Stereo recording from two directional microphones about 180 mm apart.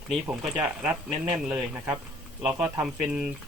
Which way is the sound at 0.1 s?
5° right (ahead or behind).